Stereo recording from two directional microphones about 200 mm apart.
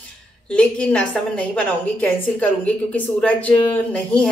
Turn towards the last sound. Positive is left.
turn(degrees=5)  # may be behind; listen again after turning